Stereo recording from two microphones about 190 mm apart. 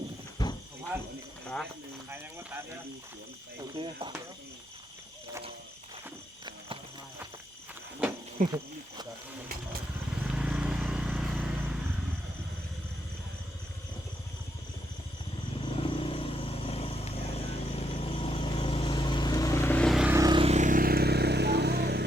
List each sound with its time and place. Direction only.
0.4 s a sound: 20° left (ahead or behind)
3.6 s speech: 25° right (ahead or behind)
8.4 s speech: 40° right (ahead or behind)
10.2 s vehicle: 5° right (ahead or behind)
15.6 s vehicle: 30° left (ahead or behind); by 20.1 s centre (ahead or behind)
20.1 s vehicle: 20° right (ahead or behind)
20.4 s vehicle: 35° right (ahead or behind); by 22.0 s 60° right (ahead or behind)